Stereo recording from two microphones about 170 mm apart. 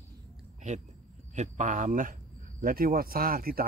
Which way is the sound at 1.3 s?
45° right (ahead or behind).